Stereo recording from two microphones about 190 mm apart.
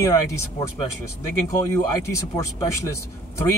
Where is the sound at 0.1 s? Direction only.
15° left (ahead or behind).